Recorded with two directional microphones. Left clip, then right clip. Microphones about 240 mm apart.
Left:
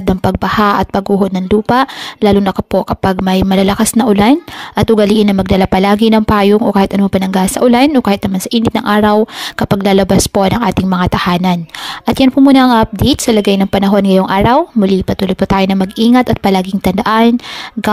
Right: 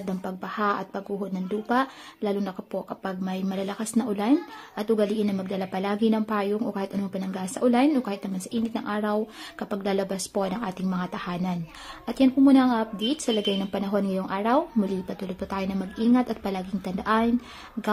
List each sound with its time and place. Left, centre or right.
0.0 s speech: left